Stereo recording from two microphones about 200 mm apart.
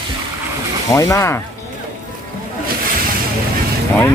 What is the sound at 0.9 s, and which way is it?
Speech, 15° left (ahead or behind).